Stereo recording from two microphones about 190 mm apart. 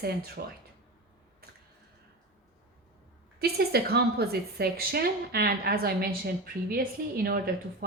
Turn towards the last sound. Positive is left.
turn(degrees=-50)  # may be behind; listen again after turning